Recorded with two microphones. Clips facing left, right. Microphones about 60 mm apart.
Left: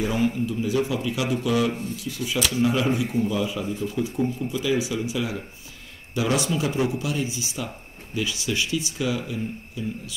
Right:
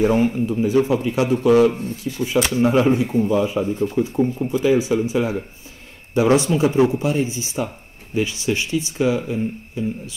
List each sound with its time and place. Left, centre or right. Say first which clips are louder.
0.0 s speech: right 6 dB; right